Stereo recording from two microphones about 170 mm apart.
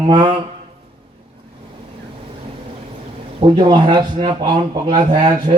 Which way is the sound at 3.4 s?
30° right (ahead or behind).